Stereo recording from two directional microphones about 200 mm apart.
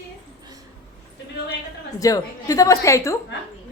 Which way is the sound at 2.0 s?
15° left (ahead or behind).